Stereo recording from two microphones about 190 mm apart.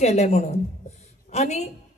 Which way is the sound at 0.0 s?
35° left (ahead or behind).